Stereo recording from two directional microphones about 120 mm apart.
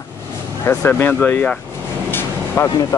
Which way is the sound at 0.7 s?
15° left (ahead or behind).